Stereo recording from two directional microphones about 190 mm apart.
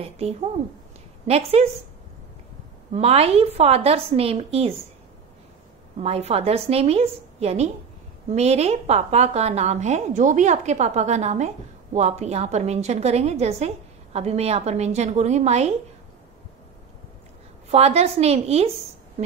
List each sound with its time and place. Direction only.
0.0 s a woman's voice: 30° right (ahead or behind)
2.9 s a woman's voice: 30° right (ahead or behind)
5.9 s a woman's voice: 35° right (ahead or behind)
17.6 s a woman's voice: 35° right (ahead or behind)